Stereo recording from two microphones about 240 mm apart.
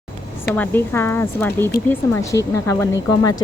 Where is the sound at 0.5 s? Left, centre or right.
Centre.